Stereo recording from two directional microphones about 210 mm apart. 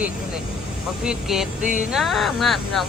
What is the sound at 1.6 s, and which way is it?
Music, 35° right (ahead or behind).